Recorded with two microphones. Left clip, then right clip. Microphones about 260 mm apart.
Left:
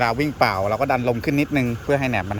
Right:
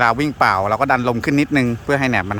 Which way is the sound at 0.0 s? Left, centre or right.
Centre.